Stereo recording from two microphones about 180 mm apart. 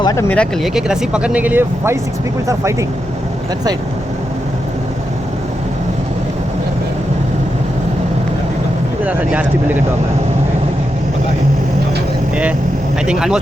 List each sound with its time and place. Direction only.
0.0 s speech: 20° left (ahead or behind)
0.3 s speech: 5° left (ahead or behind)
9.0 s speech: 10° right (ahead or behind)
13.1 s speech: 5° right (ahead or behind)